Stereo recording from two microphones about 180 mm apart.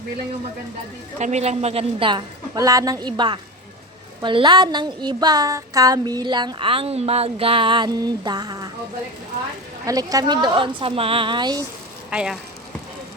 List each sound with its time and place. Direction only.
1.2 s a woman's voice: 40° right (ahead or behind); by 8.7 s 20° right (ahead or behind)
9.8 s a woman's voice: 20° right (ahead or behind)
12.1 s speech: 5° right (ahead or behind)